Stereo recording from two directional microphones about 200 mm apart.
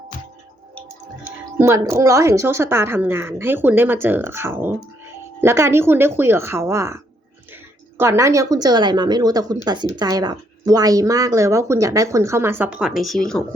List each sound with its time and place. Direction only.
1.5 s a woman's voice: 15° right (ahead or behind); by 13.4 s centre (ahead or behind)